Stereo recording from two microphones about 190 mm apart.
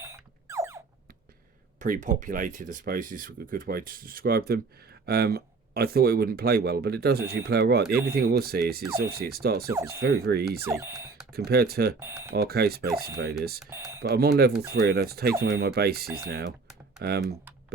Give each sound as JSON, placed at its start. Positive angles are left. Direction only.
{"t": 0.0, "sound": "a sound", "side_deg": -15}
{"t": 1.8, "sound": "speech", "side_deg": -40}
{"t": 10.6, "sound": "speech", "side_deg": -15}
{"t": 11.3, "sound": "speech", "side_deg": -55}
{"t": 11.9, "sound": "speech", "side_deg": -15}
{"t": 12.3, "sound": "speech", "side_deg": -55}
{"t": 13.7, "sound": "speech", "side_deg": -15}
{"t": 14.0, "sound": "speech", "side_deg": -55}
{"t": 16.0, "sound": "speech", "side_deg": -15}
{"t": 17.0, "sound": "speech", "side_deg": -60}